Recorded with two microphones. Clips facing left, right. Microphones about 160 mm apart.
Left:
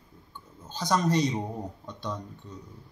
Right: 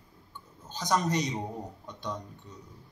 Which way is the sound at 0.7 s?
15° right (ahead or behind).